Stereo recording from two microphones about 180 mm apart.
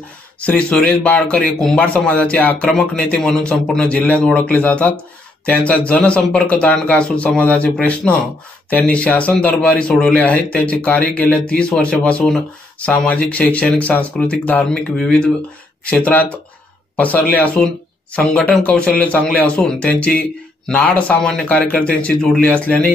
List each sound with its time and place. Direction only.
0.4 s speech: 5° left (ahead or behind)